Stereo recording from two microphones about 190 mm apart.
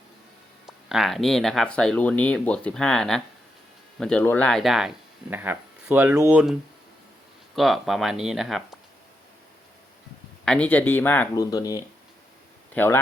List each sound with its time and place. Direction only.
0.9 s speech: centre (ahead or behind)
10.4 s speech: 5° left (ahead or behind)